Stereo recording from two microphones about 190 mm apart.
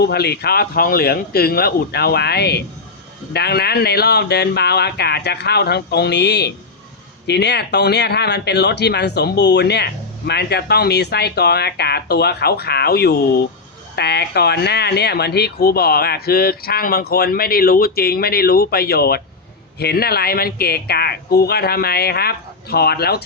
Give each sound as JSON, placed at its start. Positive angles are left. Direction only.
{"t": 0.0, "sound": "speech", "side_deg": 55}